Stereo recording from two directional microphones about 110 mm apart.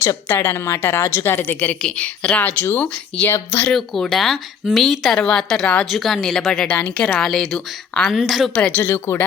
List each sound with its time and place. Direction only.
0.3 s a woman's voice: 25° left (ahead or behind)
3.7 s speech: 5° left (ahead or behind)
8.5 s speech: 10° left (ahead or behind)